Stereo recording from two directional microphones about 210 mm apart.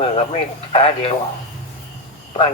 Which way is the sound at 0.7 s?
25° left (ahead or behind).